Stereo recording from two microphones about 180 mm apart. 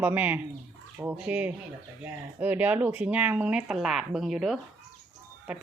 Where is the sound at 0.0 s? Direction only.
10° right (ahead or behind).